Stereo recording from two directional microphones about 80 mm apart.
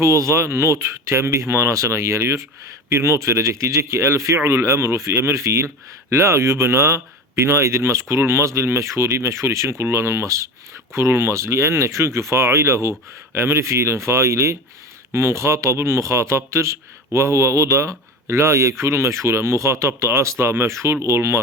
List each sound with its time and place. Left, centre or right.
0.0 s a man's voice: right